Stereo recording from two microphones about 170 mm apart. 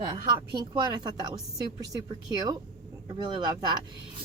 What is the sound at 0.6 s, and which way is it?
A woman's voice, 25° right (ahead or behind).